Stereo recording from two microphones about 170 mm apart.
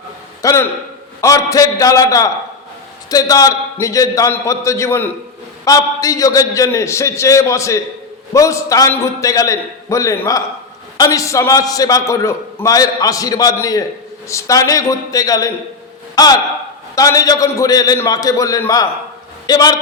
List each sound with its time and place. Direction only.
0.4 s a man's voice: 15° left (ahead or behind)